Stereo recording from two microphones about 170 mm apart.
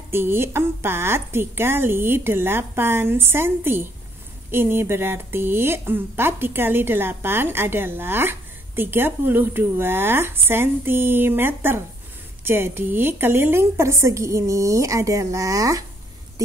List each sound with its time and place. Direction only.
0.1 s speech: 15° right (ahead or behind)